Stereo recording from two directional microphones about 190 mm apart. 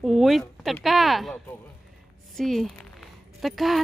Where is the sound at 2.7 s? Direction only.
5° left (ahead or behind).